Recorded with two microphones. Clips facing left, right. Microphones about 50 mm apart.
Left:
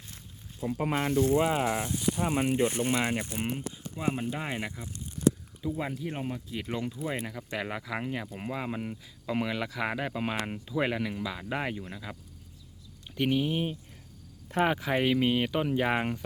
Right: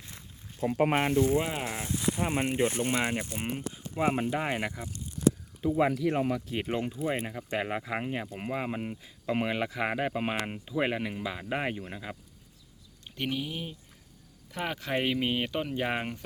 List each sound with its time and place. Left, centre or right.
0.1 s a sound: right
0.9 s speech: right
1.4 s speech: centre
2.1 s speech: centre
3.9 s speech: right
5.7 s speech: right
6.7 s speech: right
13.1 s a sound: centre
13.4 s speech: left
14.6 s speech: centre
14.8 s speech: centre